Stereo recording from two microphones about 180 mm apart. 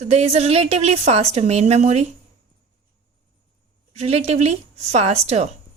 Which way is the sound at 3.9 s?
35° right (ahead or behind).